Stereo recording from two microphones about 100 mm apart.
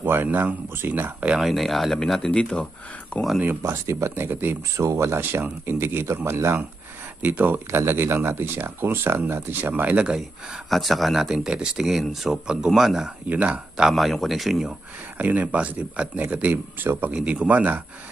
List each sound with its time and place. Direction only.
0.0 s speech: 20° right (ahead or behind)
1.4 s speech: centre (ahead or behind)
3.6 s speech: 30° right (ahead or behind); by 14.7 s centre (ahead or behind)
15.1 s speech: 15° right (ahead or behind)